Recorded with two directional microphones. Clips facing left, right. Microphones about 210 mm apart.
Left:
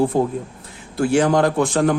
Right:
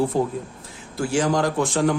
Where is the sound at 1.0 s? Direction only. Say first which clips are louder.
Left 5 dB; 60° left (ahead or behind).